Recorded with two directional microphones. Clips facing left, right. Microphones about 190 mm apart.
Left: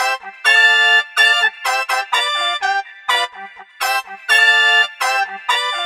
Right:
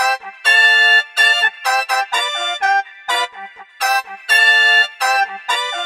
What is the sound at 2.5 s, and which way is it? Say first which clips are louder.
Music: right 6 dB; 55° right (ahead or behind).